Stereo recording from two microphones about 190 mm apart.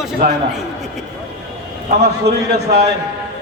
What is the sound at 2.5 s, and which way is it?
Speech, 60° right (ahead or behind).